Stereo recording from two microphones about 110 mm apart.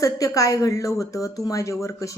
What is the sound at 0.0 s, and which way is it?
Speech, 30° left (ahead or behind).